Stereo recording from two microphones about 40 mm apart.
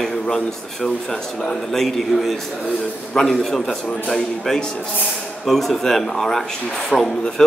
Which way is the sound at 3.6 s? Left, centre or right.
Left.